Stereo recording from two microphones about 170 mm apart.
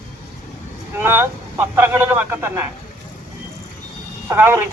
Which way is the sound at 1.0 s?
15° right (ahead or behind).